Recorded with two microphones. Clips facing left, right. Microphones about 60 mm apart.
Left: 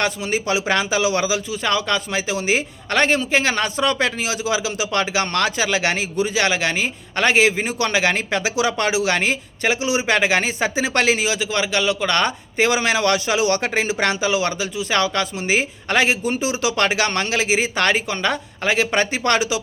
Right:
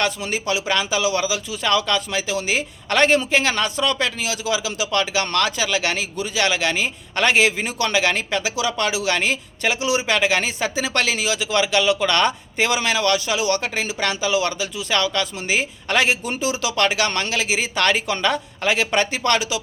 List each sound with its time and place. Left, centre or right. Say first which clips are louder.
0.2 s a man's voice: left 3 dB; centre
0.4 s speech: left 1 dB; left
1.5 s a man's voice: even; centre
9.0 s a man's voice: left 1 dB; centre
14.3 s a man's voice: left 1 dB; centre